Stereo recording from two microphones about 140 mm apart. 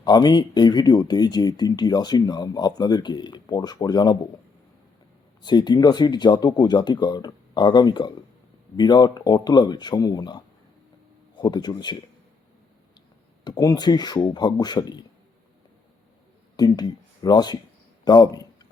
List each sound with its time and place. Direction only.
0.0 s speech: 30° left (ahead or behind)
5.4 s speech: 30° left (ahead or behind)
13.4 s speech: 25° left (ahead or behind)
16.6 s speech: 30° left (ahead or behind)